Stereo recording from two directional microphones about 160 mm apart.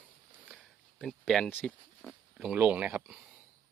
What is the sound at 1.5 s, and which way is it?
Speech, 10° left (ahead or behind).